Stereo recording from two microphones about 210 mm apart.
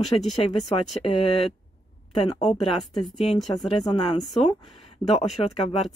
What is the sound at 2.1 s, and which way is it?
Speech, 25° left (ahead or behind).